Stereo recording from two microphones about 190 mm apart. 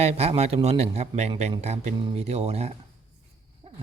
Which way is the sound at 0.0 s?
30° right (ahead or behind).